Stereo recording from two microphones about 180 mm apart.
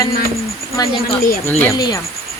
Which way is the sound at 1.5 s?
10° left (ahead or behind).